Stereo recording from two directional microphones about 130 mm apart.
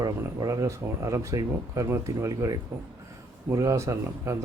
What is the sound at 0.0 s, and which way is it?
Speech, 25° right (ahead or behind).